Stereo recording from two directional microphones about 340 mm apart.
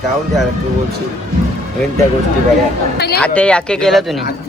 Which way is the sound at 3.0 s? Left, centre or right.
Left.